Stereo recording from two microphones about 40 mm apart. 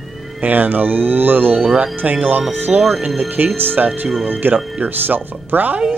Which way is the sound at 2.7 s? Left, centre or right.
Right.